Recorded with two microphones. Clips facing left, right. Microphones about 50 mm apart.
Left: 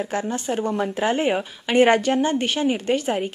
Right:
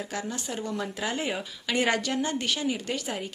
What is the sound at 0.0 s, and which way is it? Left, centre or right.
A woman's voice, left.